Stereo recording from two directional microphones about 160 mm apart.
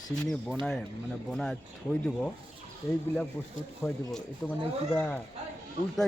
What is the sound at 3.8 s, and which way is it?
A man's voice, 5° left (ahead or behind).